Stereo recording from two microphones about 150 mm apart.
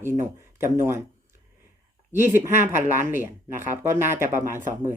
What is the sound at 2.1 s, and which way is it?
Speech, 15° right (ahead or behind).